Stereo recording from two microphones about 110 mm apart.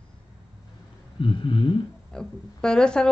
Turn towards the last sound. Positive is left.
turn(degrees=5)  # may be behind; listen again after turning